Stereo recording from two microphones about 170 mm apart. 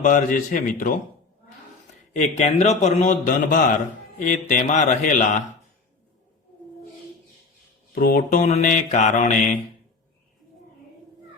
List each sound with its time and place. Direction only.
0.0 s a man's voice: 50° left (ahead or behind)
2.1 s a man's voice: 40° left (ahead or behind)
7.9 s a man's voice: 60° left (ahead or behind)